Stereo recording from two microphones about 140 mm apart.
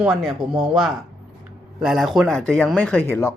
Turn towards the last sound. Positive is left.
turn(degrees=10)  # may be behind; listen again after turning